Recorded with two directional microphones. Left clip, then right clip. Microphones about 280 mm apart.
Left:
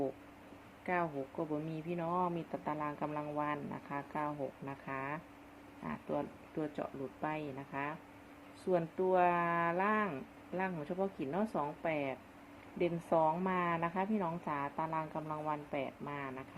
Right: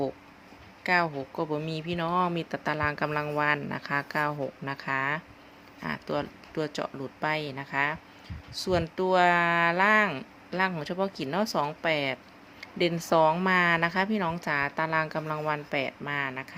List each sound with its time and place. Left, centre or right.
0.9 s speech: right